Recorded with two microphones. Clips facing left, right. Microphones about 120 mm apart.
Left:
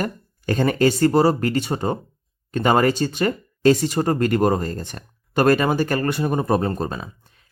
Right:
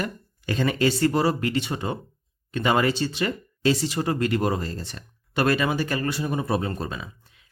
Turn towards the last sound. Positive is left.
turn(degrees=40)  # may be behind; listen again after turning